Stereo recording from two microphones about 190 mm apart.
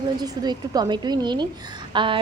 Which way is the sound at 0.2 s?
20° right (ahead or behind).